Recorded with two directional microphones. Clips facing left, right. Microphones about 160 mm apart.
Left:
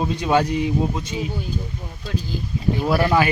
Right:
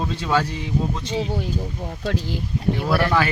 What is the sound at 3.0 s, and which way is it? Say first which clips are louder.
Speech: left 3 dB; 15° left (ahead or behind).